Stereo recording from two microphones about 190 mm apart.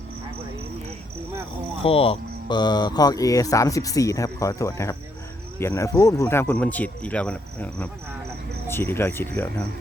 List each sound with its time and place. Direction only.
1.8 s speech: 30° left (ahead or behind); by 9.5 s 10° left (ahead or behind)